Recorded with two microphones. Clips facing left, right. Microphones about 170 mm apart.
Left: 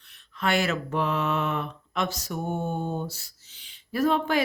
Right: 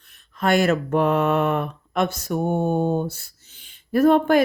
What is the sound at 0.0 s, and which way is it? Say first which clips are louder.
Mantra: right 5 dB; 45° right (ahead or behind).